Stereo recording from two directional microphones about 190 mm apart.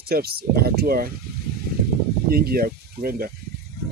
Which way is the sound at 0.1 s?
55° right (ahead or behind).